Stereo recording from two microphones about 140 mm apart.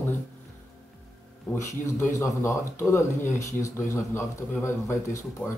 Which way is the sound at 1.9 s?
20° left (ahead or behind).